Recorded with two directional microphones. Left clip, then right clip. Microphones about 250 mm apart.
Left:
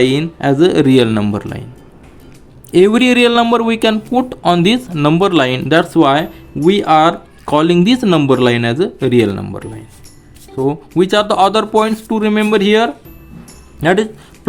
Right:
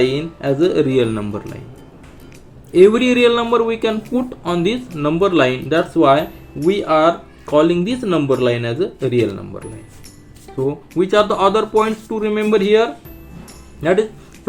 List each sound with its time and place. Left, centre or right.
0.0 s speech: left
2.7 s speech: left
10.7 s speech: left